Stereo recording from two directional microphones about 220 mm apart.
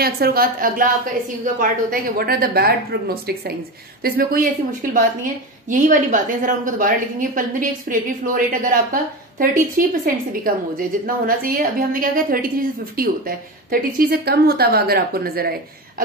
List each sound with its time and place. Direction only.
0.0 s a woman's voice: 45° right (ahead or behind)
5.7 s a woman's voice: 35° right (ahead or behind)